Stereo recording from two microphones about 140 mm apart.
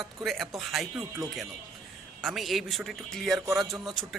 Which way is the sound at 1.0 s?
20° right (ahead or behind).